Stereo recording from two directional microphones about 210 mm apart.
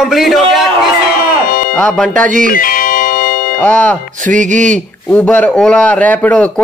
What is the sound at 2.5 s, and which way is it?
Music, 40° left (ahead or behind).